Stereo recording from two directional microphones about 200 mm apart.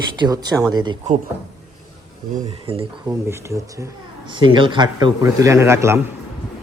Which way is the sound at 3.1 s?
15° right (ahead or behind).